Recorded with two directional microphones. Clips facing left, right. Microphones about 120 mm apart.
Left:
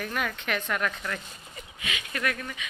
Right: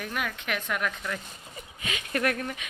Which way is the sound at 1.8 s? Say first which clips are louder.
Right 3 dB; 40° right (ahead or behind).